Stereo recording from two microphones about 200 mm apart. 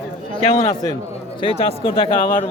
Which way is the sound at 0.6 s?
20° left (ahead or behind).